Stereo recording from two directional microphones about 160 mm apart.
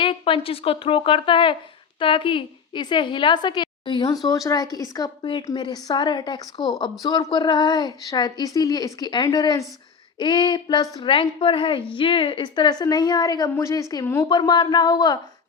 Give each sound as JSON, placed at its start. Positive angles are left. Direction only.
{"t": 0.0, "sound": "a woman's voice", "side_deg": 35}
{"t": 14.3, "sound": "a woman's voice", "side_deg": 30}